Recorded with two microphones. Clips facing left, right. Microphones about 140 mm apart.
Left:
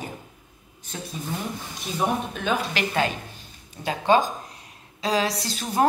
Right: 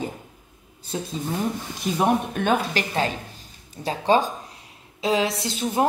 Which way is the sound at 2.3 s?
55° right (ahead or behind).